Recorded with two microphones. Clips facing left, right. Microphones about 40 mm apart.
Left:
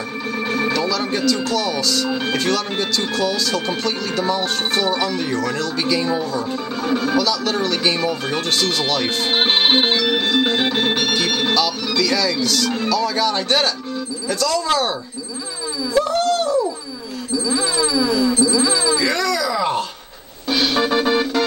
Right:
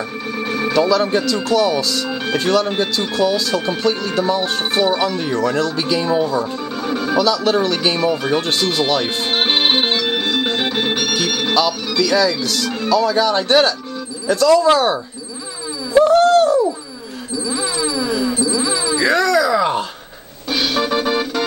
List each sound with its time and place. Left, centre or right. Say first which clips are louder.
0.4 s a sound: even; centre
0.7 s speech: right 6 dB; centre
6.8 s speech: even; centre
7.2 s speech: right 4 dB; centre
8.4 s speech: right 2 dB; centre
9.0 s music: even; centre
11.2 s a sound: even; centre
11.5 s speech: right 2 dB; centre
15.9 s a sound: right 7 dB; centre
18.9 s groan: right 5 dB; centre
20.4 s music: left 1 dB; centre